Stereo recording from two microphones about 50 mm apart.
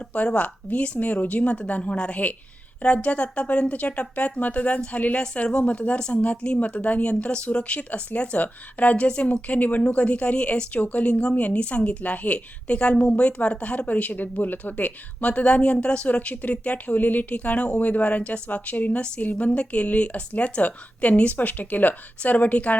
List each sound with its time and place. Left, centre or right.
0.3 s a woman's voice: left
5.2 s a woman's voice: centre